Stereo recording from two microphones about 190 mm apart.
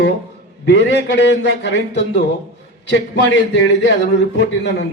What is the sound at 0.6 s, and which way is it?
A man's voice, 65° left (ahead or behind).